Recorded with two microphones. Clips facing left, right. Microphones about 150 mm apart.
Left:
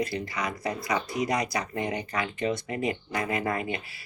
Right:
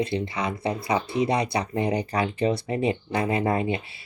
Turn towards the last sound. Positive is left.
turn(degrees=-25)  # may be behind; listen again after turning